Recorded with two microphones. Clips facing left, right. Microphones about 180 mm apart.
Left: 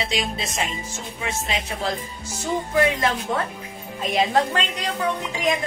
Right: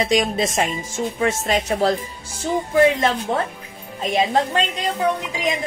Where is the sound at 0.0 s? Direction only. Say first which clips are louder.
Right 8 dB; 45° right (ahead or behind).